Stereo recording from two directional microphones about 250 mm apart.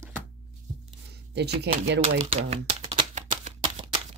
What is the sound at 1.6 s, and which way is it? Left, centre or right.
Speech, right.